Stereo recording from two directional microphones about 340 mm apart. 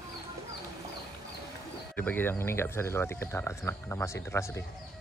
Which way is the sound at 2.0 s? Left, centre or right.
Centre.